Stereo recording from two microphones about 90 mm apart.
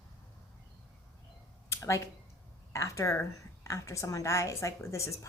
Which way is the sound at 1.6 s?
35° left (ahead or behind).